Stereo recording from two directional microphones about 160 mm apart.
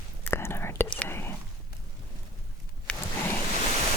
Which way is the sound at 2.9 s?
5° left (ahead or behind).